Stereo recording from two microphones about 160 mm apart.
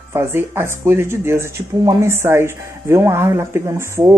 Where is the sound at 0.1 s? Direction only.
15° right (ahead or behind).